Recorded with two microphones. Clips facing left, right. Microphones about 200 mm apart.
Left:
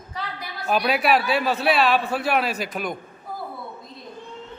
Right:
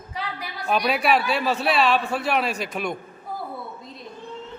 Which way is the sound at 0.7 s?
Centre (ahead or behind).